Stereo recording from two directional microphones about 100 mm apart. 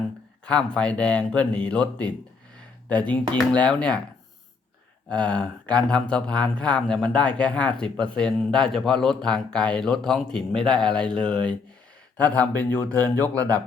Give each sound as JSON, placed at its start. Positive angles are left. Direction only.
{"t": 0.4, "sound": "speech", "side_deg": 10}
{"t": 5.0, "sound": "speech", "side_deg": 10}